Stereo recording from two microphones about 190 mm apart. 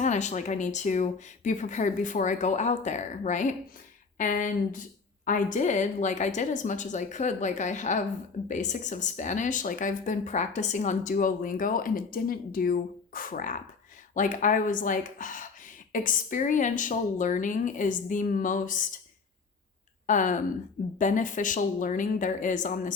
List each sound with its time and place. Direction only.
0.0 s speech: 40° left (ahead or behind)
20.1 s speech: 40° left (ahead or behind)